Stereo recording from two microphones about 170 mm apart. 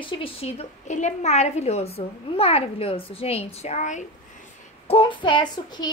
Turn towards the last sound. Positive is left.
turn(degrees=25)  # may be behind; listen again after turning